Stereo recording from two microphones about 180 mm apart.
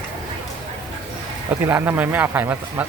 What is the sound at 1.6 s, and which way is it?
Speech, 10° right (ahead or behind).